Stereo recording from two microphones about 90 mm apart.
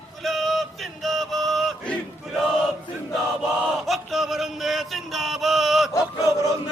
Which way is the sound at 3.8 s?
Centre (ahead or behind).